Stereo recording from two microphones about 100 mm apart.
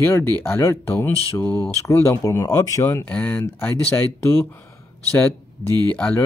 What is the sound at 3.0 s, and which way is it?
Speech, 15° left (ahead or behind).